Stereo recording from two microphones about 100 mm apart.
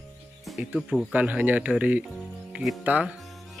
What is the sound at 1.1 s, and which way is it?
Speech, 15° right (ahead or behind).